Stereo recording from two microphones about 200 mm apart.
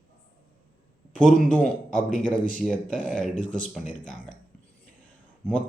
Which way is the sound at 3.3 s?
40° left (ahead or behind).